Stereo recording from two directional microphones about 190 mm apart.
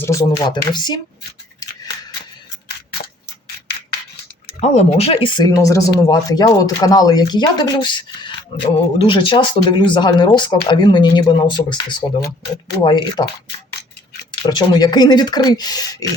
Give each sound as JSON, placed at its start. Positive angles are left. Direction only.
{"t": 0.0, "sound": "speech", "side_deg": 15}
{"t": 4.6, "sound": "speech", "side_deg": 35}
{"t": 14.3, "sound": "speech", "side_deg": 25}